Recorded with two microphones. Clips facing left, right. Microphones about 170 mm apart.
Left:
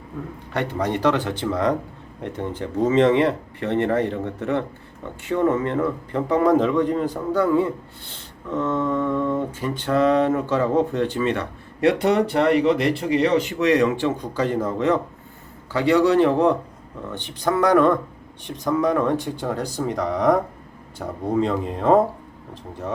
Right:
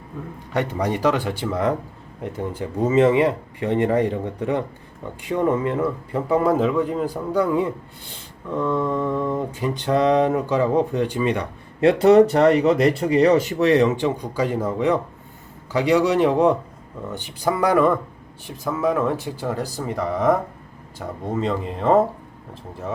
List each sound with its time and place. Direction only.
0.5 s mantra: 15° right (ahead or behind)
11.8 s speech: 30° right (ahead or behind)
13.8 s mantra: 15° right (ahead or behind)
18.4 s speech: 5° right (ahead or behind)